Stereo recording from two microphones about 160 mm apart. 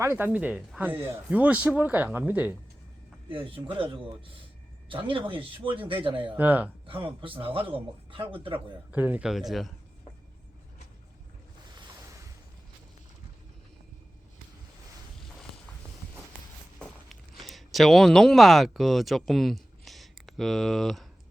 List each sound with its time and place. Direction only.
0.0 s speech: 10° right (ahead or behind)
3.2 s speech: 35° right (ahead or behind)
6.3 s speech: 10° right (ahead or behind)
6.8 s speech: 35° right (ahead or behind)
8.5 s a man's voice: 10° right (ahead or behind)
11.7 s ocean: 30° right (ahead or behind)
16.8 s a sound: centre (ahead or behind)